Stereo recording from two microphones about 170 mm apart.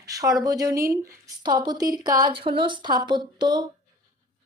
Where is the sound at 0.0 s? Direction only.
20° right (ahead or behind).